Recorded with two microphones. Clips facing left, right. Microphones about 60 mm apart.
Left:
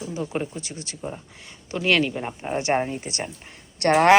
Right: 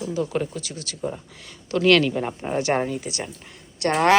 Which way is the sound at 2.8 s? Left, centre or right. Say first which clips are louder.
Right 1 dB; left.